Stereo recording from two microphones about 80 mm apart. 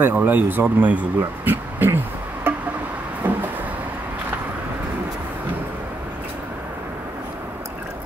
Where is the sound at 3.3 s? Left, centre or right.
Right.